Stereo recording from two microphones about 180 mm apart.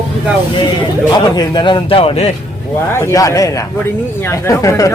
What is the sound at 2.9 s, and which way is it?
Speech, 15° left (ahead or behind).